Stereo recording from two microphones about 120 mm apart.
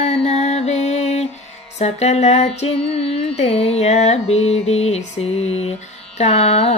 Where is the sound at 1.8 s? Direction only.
65° left (ahead or behind).